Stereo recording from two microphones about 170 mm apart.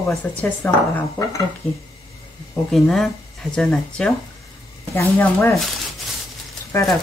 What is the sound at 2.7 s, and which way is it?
Speech, centre (ahead or behind).